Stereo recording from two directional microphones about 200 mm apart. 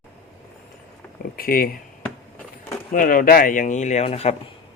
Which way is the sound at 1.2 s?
45° left (ahead or behind).